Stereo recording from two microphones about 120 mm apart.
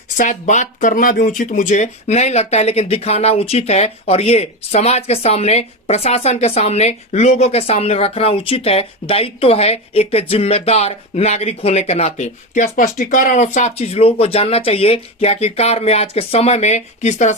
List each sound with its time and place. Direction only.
0.2 s speech: 85° left